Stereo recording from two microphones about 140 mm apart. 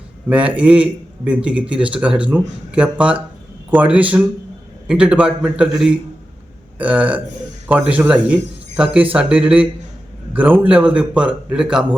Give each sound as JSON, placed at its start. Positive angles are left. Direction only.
{"t": 0.3, "sound": "a man's voice", "side_deg": -10}